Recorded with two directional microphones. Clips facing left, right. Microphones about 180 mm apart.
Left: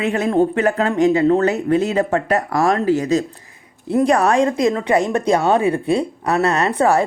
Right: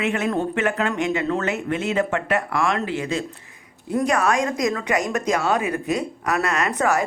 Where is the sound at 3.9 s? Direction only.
30° left (ahead or behind).